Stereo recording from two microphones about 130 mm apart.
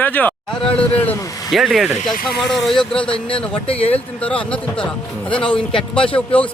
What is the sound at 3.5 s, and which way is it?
Speech, 45° left (ahead or behind).